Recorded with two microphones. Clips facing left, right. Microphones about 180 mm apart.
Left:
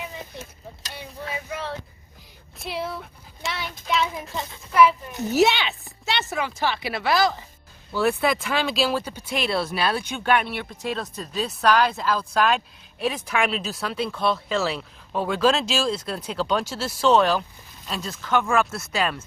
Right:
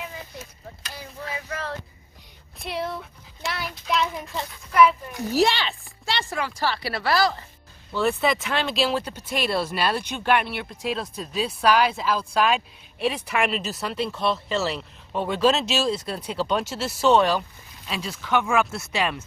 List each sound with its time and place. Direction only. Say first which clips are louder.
2.6 s speech: right 1 dB; centre (ahead or behind)
6.6 s speech: even; 20° left (ahead or behind)
7.1 s speech: left 1 dB; centre (ahead or behind)